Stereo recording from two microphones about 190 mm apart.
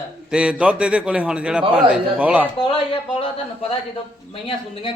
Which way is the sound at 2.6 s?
25° left (ahead or behind).